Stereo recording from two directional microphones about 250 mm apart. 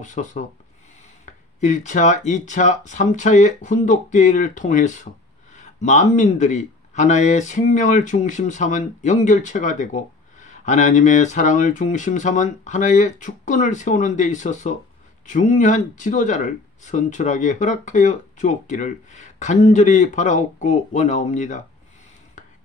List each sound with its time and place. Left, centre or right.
0.0 s speech: left
1.6 s speech: left